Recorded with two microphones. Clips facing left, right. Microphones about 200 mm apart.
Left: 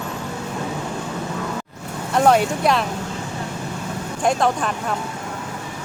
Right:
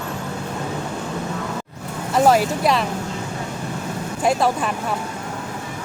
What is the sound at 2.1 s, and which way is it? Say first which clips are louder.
Speech: even; centre (ahead or behind).